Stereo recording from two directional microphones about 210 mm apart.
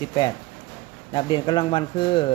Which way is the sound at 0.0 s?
20° left (ahead or behind).